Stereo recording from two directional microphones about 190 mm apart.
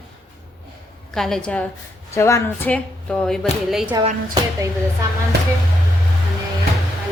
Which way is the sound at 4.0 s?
40° right (ahead or behind).